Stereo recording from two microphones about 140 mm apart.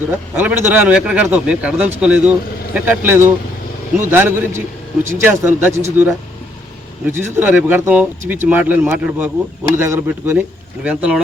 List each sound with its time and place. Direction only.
0.3 s speech: 15° right (ahead or behind)